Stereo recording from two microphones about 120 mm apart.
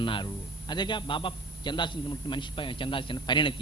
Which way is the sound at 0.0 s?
45° left (ahead or behind).